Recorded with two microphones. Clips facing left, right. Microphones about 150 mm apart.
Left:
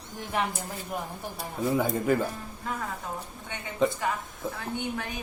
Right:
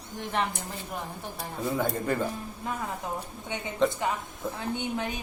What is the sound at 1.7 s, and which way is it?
Speech, 5° left (ahead or behind).